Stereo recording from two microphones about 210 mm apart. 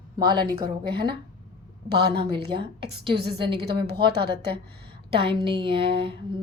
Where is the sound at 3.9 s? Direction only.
50° right (ahead or behind).